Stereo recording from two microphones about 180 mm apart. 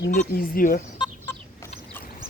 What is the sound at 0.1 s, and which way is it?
Speech, 55° left (ahead or behind).